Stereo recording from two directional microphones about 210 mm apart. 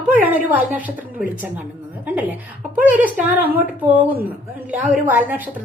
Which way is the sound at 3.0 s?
10° right (ahead or behind).